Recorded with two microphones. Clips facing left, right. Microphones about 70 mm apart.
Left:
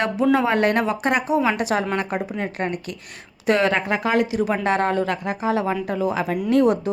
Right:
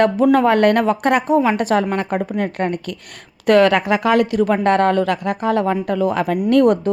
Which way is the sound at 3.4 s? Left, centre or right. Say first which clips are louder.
Right 6 dB; right.